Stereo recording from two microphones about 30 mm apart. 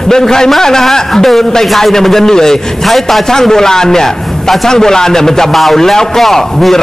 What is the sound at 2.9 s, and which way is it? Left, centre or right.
Speech, centre.